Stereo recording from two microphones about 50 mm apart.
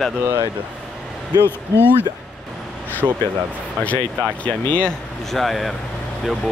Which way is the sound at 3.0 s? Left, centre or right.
Centre.